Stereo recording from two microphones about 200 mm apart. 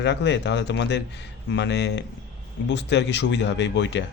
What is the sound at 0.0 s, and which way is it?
A man's voice, 60° left (ahead or behind).